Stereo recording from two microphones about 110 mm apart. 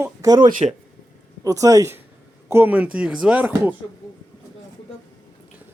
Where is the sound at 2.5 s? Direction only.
20° right (ahead or behind).